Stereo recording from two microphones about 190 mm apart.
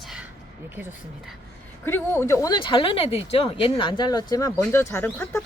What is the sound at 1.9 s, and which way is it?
Speech, 10° left (ahead or behind).